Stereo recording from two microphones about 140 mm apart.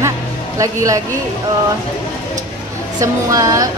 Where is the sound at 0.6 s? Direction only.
20° right (ahead or behind).